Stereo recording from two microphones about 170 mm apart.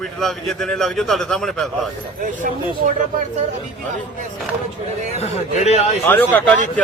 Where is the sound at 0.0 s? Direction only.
Centre (ahead or behind).